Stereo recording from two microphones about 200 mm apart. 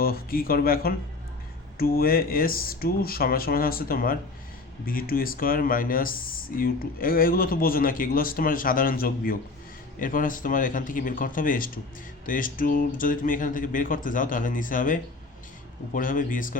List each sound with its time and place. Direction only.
0.0 s speech: 45° left (ahead or behind)